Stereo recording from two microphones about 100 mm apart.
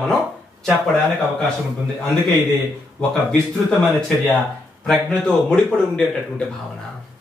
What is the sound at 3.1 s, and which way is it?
Speech, 10° left (ahead or behind).